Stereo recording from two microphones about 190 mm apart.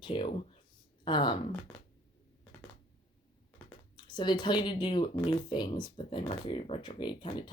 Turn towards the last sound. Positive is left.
turn(degrees=25)  # may be behind; listen again after turning